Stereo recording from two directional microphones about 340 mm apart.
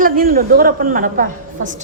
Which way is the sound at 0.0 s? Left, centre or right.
Right.